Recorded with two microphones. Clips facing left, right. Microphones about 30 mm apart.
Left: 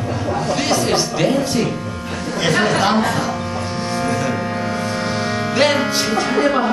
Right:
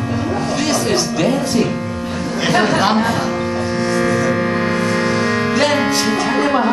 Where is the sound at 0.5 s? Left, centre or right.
Centre.